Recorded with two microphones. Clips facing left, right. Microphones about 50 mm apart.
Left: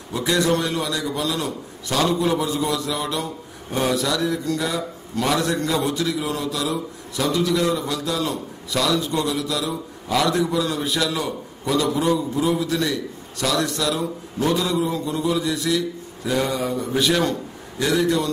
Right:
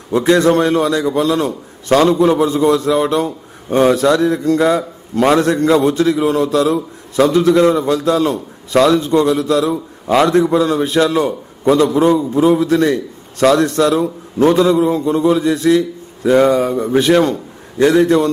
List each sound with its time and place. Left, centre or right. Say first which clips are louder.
0.1 s a man's voice: right 9 dB; right